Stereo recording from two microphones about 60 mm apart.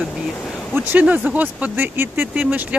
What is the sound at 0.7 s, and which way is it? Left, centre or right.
Speech, right.